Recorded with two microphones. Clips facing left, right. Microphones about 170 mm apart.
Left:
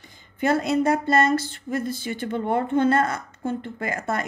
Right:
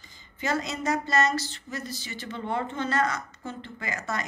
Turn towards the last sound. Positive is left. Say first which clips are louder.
# left 6 dB
turn(degrees=55)  # may be behind; listen again after turning